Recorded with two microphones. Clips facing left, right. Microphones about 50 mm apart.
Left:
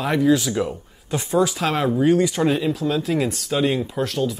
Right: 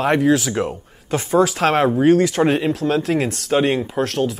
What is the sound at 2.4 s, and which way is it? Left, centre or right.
Speech, right.